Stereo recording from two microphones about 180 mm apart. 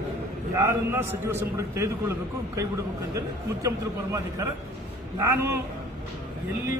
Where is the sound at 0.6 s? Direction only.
15° right (ahead or behind).